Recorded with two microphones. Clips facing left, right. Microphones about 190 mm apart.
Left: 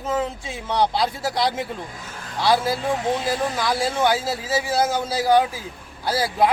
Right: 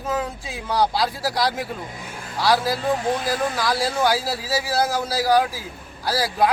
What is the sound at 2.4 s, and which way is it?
A man's voice, 20° left (ahead or behind).